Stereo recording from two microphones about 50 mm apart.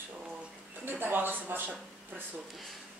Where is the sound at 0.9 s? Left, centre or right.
Right.